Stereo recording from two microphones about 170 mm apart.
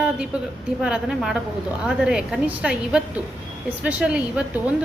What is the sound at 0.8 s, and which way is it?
A woman's voice, 5° right (ahead or behind).